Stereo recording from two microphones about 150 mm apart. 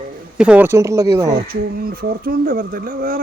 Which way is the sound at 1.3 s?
85° right.